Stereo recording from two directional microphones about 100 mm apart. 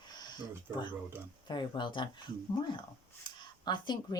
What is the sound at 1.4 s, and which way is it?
Speech, 50° left (ahead or behind).